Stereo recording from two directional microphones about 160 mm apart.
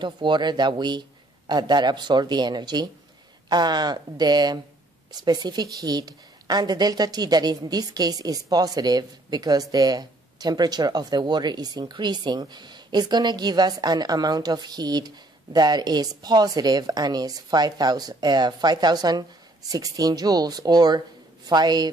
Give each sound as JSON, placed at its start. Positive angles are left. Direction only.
{"t": 0.0, "sound": "a woman's voice", "side_deg": -30}